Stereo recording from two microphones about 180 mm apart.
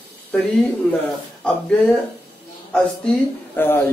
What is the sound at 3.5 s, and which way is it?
Speech, 10° left (ahead or behind).